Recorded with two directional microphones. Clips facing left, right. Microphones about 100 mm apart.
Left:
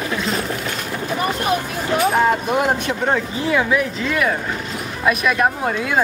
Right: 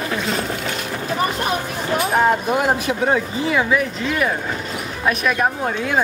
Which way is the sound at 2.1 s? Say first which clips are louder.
Right 3 dB; centre (ahead or behind).